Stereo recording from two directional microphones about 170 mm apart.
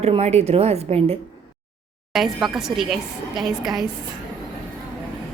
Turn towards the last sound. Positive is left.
turn(degrees=0)  # may be behind; listen again after turning